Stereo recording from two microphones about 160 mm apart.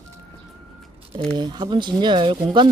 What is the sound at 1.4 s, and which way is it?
Speech, 30° right (ahead or behind).